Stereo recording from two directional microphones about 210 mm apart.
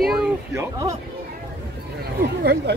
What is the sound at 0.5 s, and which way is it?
Speech, 15° right (ahead or behind).